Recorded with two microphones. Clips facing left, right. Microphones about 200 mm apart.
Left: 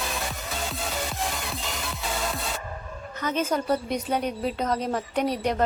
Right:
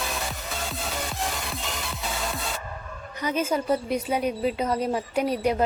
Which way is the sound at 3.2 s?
10° right (ahead or behind).